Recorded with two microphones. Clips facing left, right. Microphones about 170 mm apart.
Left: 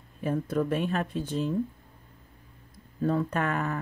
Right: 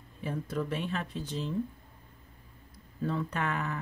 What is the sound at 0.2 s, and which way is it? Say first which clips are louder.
Speech: left 6 dB; 50° left (ahead or behind).